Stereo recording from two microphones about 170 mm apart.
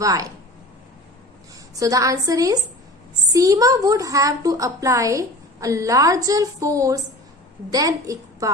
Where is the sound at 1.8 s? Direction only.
20° right (ahead or behind).